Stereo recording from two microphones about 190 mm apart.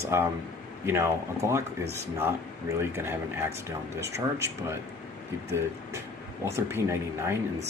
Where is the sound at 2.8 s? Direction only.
15° right (ahead or behind).